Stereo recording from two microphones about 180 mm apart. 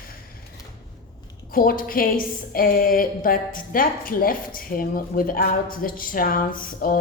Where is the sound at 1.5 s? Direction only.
50° left (ahead or behind).